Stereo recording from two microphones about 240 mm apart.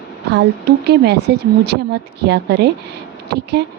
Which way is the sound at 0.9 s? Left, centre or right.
Right.